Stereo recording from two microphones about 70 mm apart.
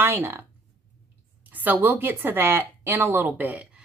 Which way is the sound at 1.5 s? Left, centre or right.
Right.